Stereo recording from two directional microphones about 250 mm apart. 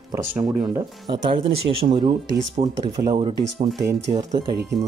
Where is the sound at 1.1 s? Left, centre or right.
Right.